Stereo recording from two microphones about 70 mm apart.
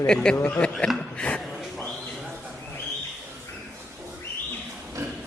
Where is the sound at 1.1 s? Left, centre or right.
Centre.